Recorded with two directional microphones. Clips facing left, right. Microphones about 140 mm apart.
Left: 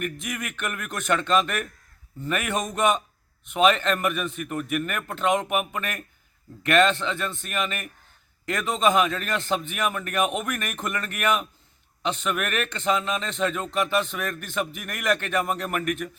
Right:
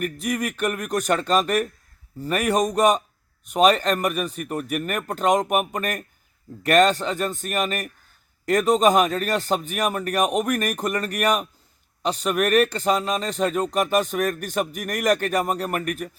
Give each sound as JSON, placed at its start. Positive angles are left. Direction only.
{"t": 0.0, "sound": "a man's voice", "side_deg": -35}